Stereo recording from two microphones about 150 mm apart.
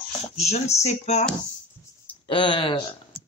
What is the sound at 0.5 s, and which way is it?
Speech, 45° left (ahead or behind).